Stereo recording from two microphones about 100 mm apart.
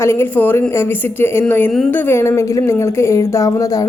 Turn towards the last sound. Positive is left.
turn(degrees=35)  # may be behind; listen again after turning